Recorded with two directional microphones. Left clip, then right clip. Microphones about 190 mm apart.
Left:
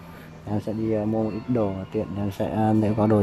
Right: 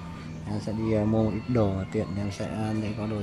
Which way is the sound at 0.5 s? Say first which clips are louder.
Left 6 dB; 20° left (ahead or behind).